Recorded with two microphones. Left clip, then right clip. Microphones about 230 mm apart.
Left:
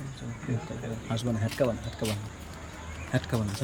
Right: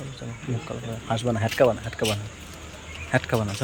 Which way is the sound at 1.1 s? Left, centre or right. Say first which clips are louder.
Right 9 dB; centre.